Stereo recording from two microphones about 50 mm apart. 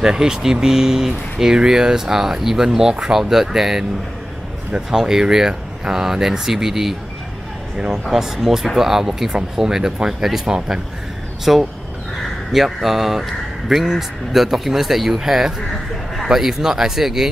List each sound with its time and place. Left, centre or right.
0.0 s speech: centre
8.1 s speech: centre